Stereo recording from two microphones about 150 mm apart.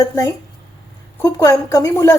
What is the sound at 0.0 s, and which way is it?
Speech, 20° left (ahead or behind).